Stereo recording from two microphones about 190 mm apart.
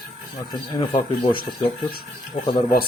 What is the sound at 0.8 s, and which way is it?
Speech, 25° left (ahead or behind).